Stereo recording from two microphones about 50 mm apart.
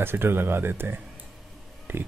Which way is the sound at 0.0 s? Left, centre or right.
Right.